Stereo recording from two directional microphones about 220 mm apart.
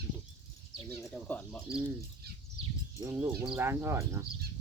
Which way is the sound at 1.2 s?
5° left (ahead or behind).